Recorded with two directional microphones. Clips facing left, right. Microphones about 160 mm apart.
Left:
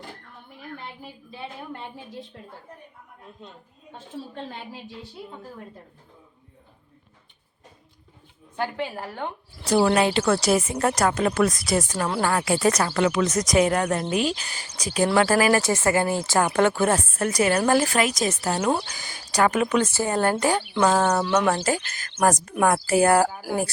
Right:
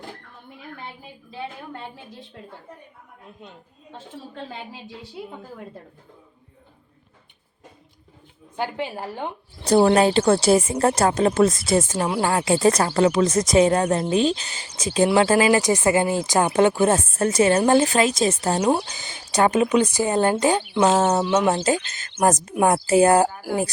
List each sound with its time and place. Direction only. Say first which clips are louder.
8.5 s speech: right 1 dB; 20° right (ahead or behind)
9.6 s speech: right 4 dB; 30° right (ahead or behind)
12.0 s speech: right 2 dB; 10° right (ahead or behind)
12.3 s speech: right 4 dB; 25° right (ahead or behind)